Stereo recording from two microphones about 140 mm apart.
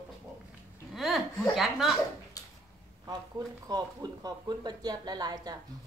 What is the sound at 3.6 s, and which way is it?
Speech, 30° right (ahead or behind).